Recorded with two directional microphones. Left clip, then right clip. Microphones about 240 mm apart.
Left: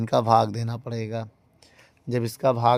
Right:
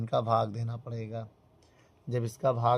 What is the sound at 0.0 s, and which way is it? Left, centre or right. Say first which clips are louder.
Speech: left 8 dB; left.